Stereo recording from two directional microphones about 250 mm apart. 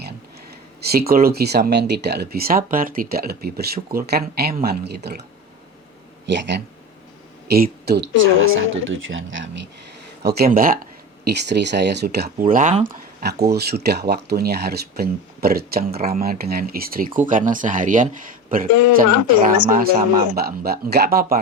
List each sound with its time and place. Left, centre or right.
0.9 s speech: right
6.2 s speech: right
19.7 s speech: right